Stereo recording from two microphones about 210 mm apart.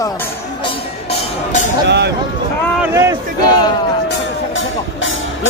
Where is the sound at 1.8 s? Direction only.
50° right (ahead or behind).